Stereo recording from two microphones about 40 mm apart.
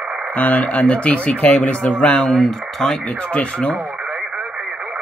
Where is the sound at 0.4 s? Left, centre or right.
Left.